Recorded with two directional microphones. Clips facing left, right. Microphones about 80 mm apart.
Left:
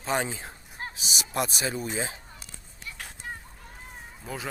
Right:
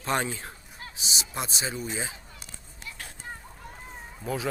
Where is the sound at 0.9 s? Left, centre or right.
Right.